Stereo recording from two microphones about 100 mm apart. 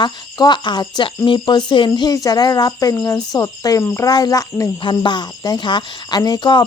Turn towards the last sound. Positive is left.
turn(degrees=50)  # may be behind; listen again after turning